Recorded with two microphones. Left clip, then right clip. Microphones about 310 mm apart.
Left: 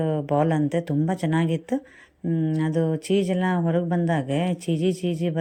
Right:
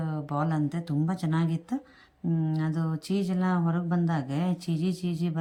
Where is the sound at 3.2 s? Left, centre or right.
Centre.